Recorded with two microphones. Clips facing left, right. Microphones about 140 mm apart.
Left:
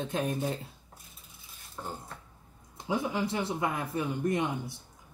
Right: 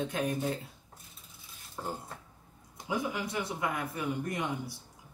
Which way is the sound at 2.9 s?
25° left (ahead or behind).